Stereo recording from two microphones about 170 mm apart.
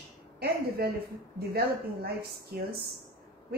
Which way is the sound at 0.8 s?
65° right (ahead or behind).